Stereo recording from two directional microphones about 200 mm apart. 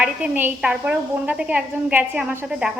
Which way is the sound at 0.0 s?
10° right (ahead or behind).